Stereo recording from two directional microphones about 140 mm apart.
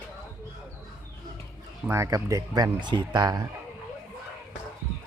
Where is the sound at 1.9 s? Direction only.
20° right (ahead or behind).